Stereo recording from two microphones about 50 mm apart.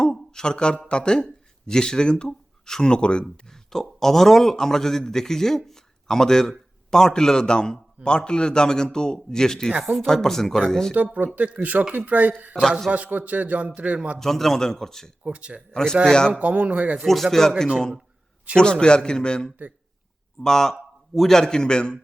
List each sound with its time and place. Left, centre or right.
0.0 s a sound: centre
0.9 s speech: centre
3.4 s speech: centre
10.9 s a man's voice: right
14.2 s speech: centre
15.2 s speech: right
15.7 s speech: centre
16.4 s speech: right
17.4 s speech: centre